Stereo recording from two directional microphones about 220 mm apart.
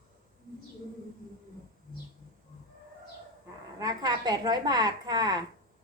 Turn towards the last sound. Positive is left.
turn(degrees=-20)  # may be behind; listen again after turning